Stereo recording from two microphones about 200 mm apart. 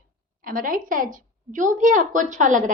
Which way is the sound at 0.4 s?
45° right (ahead or behind).